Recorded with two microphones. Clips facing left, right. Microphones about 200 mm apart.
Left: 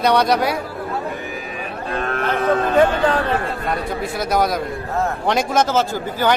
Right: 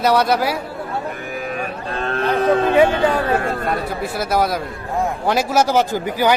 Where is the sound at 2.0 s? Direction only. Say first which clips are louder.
Right 1 dB; 30° right (ahead or behind).